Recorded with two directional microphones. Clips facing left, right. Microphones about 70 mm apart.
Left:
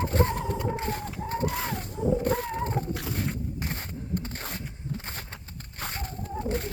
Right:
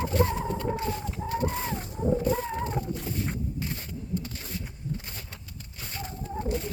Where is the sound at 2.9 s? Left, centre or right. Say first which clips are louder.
Even; left.